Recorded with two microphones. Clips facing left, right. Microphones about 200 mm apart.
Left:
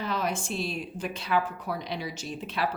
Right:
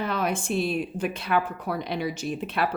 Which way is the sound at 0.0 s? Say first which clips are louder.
Right 3 dB; 55° right (ahead or behind).